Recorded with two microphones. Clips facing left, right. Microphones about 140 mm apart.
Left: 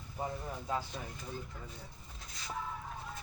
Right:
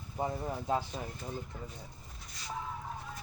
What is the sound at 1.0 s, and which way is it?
Speech, 30° right (ahead or behind).